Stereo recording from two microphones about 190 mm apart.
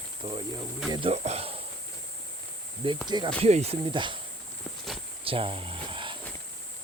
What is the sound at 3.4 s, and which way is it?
Speech, 35° right (ahead or behind).